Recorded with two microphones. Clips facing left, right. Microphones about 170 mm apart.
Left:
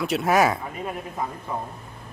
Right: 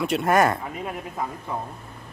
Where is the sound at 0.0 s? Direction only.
Centre (ahead or behind).